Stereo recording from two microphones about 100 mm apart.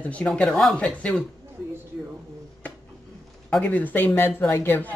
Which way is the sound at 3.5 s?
10° left (ahead or behind).